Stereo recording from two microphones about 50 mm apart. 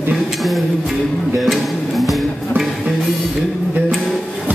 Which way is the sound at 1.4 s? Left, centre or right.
Centre.